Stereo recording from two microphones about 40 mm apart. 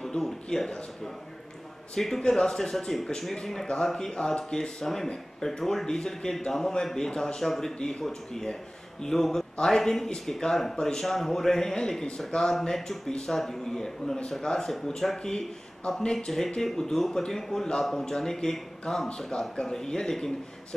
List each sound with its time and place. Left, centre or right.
0.0 s speech: centre
12.7 s speech: centre